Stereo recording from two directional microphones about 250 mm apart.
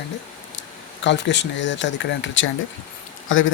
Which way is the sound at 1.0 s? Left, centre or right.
Left.